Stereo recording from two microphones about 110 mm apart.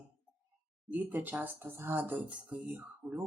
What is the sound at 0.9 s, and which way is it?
Speech, 15° right (ahead or behind).